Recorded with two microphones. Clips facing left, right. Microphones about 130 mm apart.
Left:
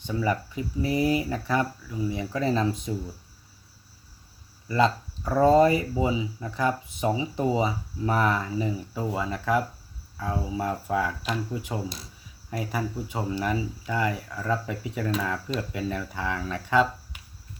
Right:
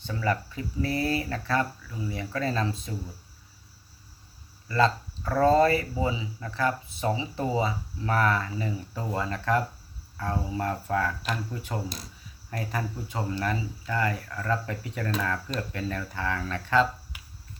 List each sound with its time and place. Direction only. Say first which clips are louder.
0.0 s speech: left 2 dB; 15° left (ahead or behind)
4.7 s speech: left 1 dB; 20° left (ahead or behind)